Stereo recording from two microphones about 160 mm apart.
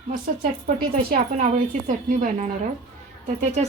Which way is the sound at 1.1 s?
60° right (ahead or behind).